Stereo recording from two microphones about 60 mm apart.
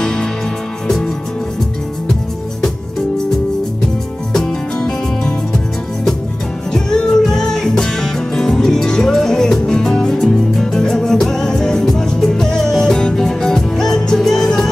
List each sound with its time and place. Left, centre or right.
0.0 s music: centre
4.3 s music: centre
6.7 s music: centre